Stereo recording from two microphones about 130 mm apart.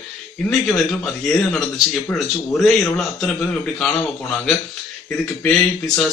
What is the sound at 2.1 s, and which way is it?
Speech, 15° left (ahead or behind).